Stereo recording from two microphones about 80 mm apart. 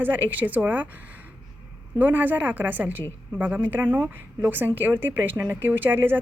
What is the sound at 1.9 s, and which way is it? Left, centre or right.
A woman's voice, right.